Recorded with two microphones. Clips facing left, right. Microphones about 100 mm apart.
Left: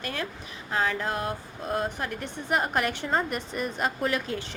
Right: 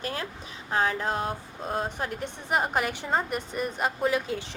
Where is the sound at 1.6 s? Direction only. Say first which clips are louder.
Left 1 dB; 25° right (ahead or behind).